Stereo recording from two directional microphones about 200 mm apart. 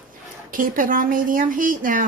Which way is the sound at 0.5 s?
45° right (ahead or behind).